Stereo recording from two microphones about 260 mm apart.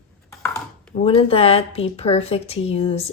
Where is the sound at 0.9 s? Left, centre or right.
Left.